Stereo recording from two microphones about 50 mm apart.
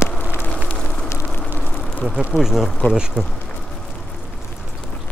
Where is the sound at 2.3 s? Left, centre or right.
Centre.